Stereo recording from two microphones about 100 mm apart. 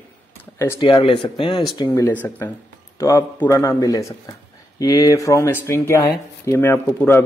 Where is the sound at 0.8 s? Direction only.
55° left (ahead or behind).